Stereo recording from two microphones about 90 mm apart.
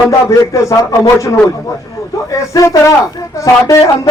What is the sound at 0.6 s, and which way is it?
A man's voice, 35° left (ahead or behind).